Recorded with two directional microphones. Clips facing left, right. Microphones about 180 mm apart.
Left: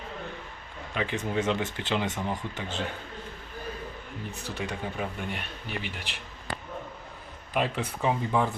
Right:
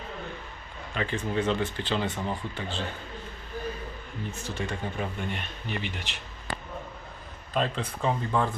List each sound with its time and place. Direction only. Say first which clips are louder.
0.9 s speech: even; 20° left (ahead or behind)
4.4 s speech: even; 15° left (ahead or behind)
7.5 s speech: even; 10° left (ahead or behind)